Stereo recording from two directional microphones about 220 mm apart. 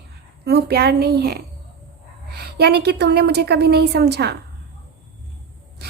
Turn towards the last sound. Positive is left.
turn(degrees=-50)  # may be behind; listen again after turning